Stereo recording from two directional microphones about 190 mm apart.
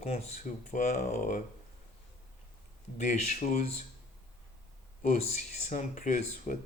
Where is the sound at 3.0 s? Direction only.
40° left (ahead or behind).